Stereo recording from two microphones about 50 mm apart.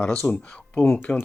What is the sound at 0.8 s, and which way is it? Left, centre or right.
Speech, left.